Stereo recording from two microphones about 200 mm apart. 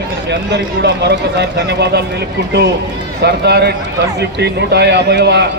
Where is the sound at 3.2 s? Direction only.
55° right (ahead or behind).